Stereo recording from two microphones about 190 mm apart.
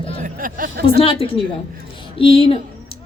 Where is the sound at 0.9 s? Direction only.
30° left (ahead or behind).